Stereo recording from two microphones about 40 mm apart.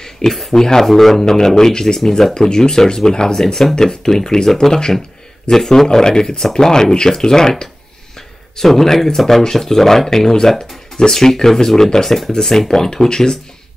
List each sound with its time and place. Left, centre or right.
0.0 s speech: centre